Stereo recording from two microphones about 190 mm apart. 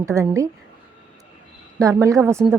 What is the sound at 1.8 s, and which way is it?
Speech, 15° right (ahead or behind).